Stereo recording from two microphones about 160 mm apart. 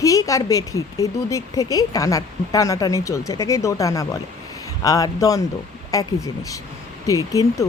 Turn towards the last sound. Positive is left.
turn(degrees=20)  # may be behind; listen again after turning